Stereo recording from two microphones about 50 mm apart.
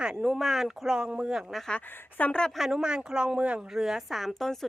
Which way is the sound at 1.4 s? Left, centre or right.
Centre.